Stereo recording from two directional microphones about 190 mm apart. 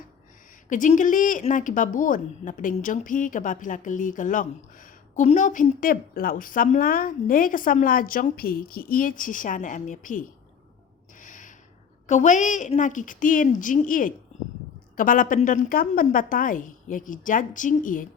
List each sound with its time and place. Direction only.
0.7 s a woman's voice: 40° left (ahead or behind)
11.2 s a sound: 45° left (ahead or behind)
12.0 s a woman's voice: 40° left (ahead or behind)